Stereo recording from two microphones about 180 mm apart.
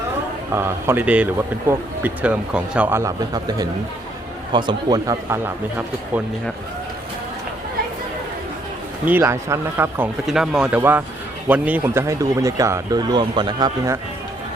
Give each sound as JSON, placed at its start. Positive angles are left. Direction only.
{"t": 0.5, "sound": "speech", "side_deg": -15}
{"t": 9.0, "sound": "speech", "side_deg": -10}